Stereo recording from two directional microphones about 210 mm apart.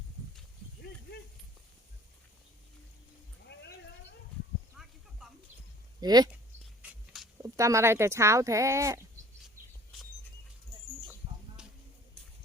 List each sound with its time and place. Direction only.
4.8 s snake: centre (ahead or behind)
5.2 s music: centre (ahead or behind)
6.0 s speech: 20° right (ahead or behind)
6.8 s a sound: centre (ahead or behind)
7.4 s speech: 15° right (ahead or behind)